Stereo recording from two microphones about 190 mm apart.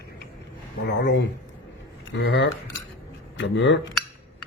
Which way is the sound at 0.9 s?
65° left (ahead or behind).